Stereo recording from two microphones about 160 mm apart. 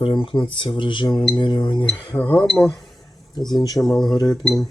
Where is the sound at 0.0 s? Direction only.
30° left (ahead or behind).